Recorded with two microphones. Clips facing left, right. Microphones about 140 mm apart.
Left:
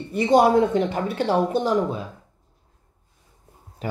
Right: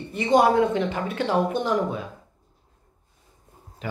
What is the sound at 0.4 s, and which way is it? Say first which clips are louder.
A woman's voice: left 1 dB; 45° left (ahead or behind).